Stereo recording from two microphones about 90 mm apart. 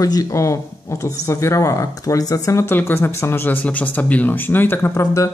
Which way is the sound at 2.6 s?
25° left (ahead or behind).